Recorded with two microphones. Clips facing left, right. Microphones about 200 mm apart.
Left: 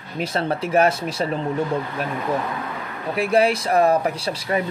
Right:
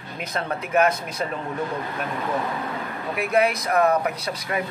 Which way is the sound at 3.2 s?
30° left (ahead or behind).